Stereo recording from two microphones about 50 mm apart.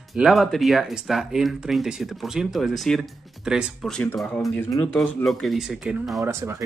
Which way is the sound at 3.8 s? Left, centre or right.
Centre.